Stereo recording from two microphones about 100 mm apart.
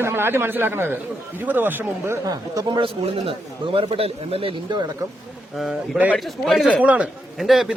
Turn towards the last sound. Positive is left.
turn(degrees=0)  # may be behind; listen again after turning